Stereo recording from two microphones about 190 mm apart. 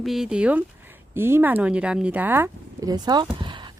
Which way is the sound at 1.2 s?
10° right (ahead or behind).